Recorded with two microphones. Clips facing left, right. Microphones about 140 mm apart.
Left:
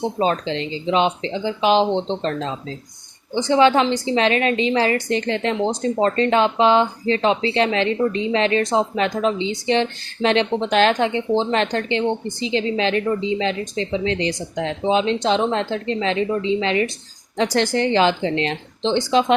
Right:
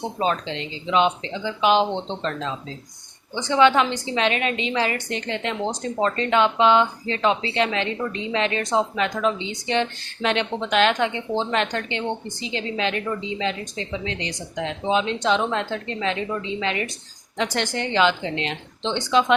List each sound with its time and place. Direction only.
0.2 s a woman's voice: 35° left (ahead or behind)